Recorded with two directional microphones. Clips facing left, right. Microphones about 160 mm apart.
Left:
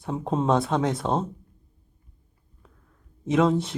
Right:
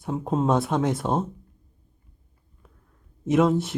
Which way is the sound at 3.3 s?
5° right (ahead or behind).